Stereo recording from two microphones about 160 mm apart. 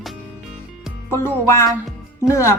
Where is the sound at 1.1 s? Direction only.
15° left (ahead or behind).